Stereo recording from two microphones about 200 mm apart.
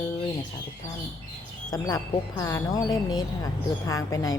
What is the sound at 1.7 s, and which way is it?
Speech, 15° left (ahead or behind).